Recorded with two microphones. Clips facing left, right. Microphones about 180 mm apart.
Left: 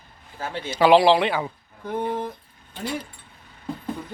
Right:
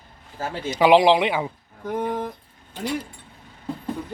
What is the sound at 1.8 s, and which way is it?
Speech, 5° left (ahead or behind).